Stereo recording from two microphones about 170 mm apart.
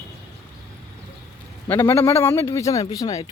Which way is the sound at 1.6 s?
15° left (ahead or behind).